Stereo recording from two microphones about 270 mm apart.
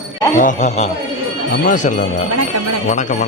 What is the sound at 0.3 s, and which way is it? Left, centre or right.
Speech, left.